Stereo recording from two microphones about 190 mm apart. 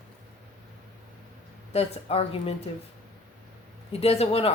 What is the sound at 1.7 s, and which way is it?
Speech, 30° left (ahead or behind).